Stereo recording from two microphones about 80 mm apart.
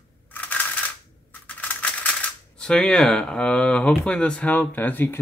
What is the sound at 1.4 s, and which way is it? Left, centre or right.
Speech, left.